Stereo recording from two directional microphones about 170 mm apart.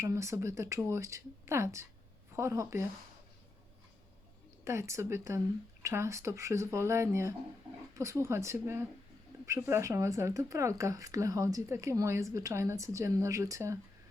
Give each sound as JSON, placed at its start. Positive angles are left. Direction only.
{"t": 0.0, "sound": "speech", "side_deg": -15}
{"t": 4.6, "sound": "speech", "side_deg": -15}